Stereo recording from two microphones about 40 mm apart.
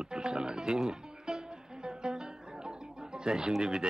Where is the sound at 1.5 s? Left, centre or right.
Centre.